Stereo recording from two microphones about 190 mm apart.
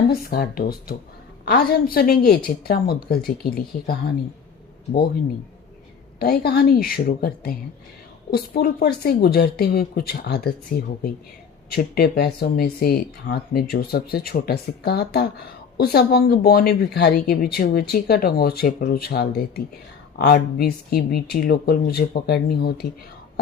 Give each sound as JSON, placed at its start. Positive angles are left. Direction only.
{"t": 0.1, "sound": "a woman's voice", "side_deg": 55}
{"t": 6.1, "sound": "a woman's voice", "side_deg": 55}